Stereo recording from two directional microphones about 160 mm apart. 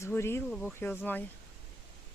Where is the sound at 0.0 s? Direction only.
15° left (ahead or behind).